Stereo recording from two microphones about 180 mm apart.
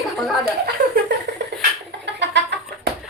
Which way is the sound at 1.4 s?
75° right (ahead or behind).